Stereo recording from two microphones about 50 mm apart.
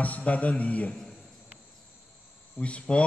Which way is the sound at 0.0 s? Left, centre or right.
Left.